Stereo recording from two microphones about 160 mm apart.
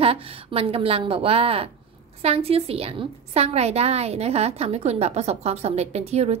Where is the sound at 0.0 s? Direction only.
35° right (ahead or behind).